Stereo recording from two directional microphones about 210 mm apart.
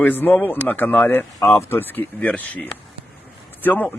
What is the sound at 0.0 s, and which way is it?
Speech, 10° left (ahead or behind).